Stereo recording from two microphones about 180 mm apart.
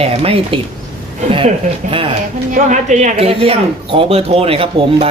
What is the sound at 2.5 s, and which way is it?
Speech, 40° right (ahead or behind).